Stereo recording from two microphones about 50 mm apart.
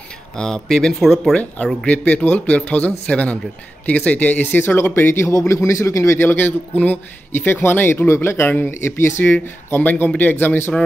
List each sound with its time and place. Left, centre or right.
0.4 s speech: centre
0.9 s speech: centre
1.3 s a man's voice: left
5.3 s a man's voice: left
6.1 s speech: left
8.1 s speech: left
8.5 s speech: left
8.8 s speech: left
9.2 s speech: left